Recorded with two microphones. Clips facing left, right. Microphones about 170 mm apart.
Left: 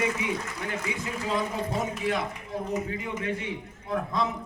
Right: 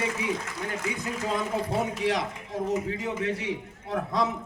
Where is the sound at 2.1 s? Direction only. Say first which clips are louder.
Right 1 dB; 90° right.